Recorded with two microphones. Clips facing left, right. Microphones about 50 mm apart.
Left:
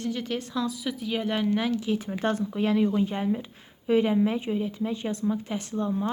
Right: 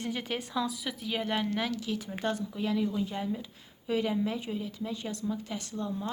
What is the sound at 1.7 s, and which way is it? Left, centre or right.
Speech, left.